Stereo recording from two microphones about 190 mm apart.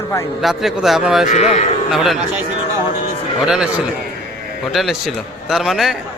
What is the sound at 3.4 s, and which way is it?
Speech, 5° right (ahead or behind).